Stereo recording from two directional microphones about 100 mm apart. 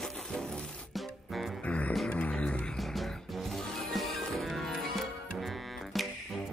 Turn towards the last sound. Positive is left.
turn(degrees=0)  # may be behind; listen again after turning